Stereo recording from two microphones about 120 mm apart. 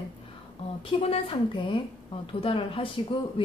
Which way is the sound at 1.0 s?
45° left (ahead or behind).